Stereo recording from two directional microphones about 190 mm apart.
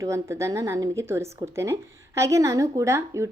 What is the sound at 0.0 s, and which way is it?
Speech, 15° right (ahead or behind).